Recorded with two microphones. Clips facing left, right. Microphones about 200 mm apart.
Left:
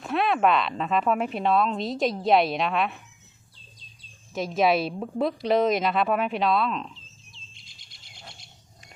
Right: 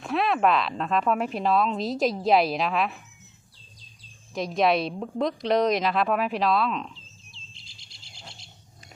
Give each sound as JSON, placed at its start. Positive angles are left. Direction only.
{"t": 0.0, "sound": "a sound", "side_deg": 0}
{"t": 0.8, "sound": "a woman's voice", "side_deg": 0}
{"t": 4.4, "sound": "a woman's voice", "side_deg": 0}
{"t": 7.5, "sound": "bird", "side_deg": -30}